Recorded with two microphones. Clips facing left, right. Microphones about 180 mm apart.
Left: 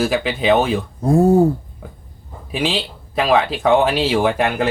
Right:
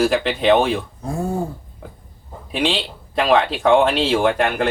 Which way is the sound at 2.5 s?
5° left (ahead or behind).